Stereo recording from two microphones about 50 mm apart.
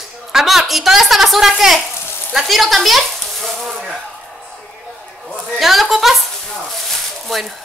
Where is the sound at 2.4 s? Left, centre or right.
Centre.